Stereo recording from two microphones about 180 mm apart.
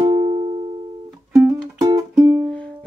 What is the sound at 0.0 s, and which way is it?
Music, 30° right (ahead or behind).